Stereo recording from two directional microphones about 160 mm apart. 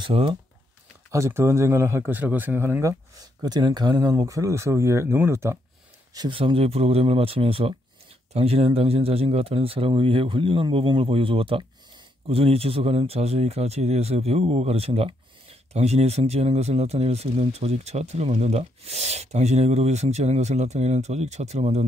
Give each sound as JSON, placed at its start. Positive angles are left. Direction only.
{"t": 0.0, "sound": "speech", "side_deg": -30}
{"t": 1.1, "sound": "speech", "side_deg": -15}
{"t": 6.1, "sound": "speech", "side_deg": -30}